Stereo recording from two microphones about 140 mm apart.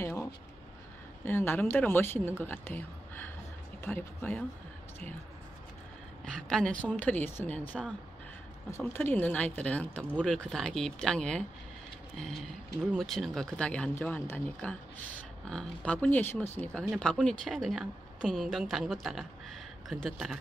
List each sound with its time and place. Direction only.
0.0 s a sound: 20° left (ahead or behind)
1.2 s speech: 15° left (ahead or behind)
6.2 s speech: 5° left (ahead or behind)
12.9 s speech: centre (ahead or behind)